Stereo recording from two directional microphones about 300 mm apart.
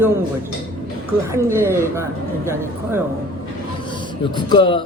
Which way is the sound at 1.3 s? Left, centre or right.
Centre.